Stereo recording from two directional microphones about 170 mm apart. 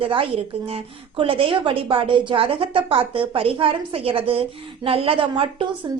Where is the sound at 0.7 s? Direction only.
30° right (ahead or behind).